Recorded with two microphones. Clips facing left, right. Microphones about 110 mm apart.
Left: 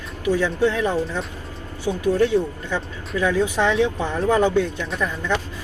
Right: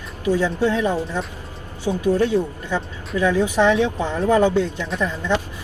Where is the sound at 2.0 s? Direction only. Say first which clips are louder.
Even; 15° right (ahead or behind).